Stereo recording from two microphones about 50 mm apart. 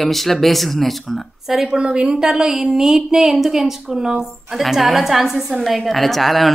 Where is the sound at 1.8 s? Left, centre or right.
Centre.